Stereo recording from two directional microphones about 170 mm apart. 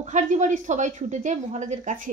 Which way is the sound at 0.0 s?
45° right (ahead or behind).